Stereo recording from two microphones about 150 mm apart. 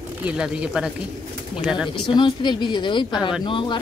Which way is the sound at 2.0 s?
30° left (ahead or behind).